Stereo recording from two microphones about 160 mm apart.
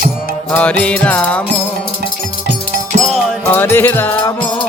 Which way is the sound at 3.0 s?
Centre (ahead or behind).